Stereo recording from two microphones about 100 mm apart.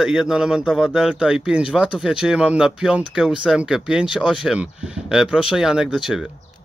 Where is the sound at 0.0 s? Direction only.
5° right (ahead or behind).